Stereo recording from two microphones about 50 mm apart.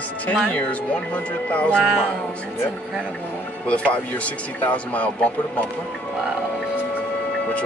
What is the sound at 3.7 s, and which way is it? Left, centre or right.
Speech, left.